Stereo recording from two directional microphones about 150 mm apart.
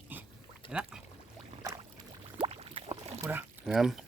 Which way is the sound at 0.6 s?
35° left (ahead or behind).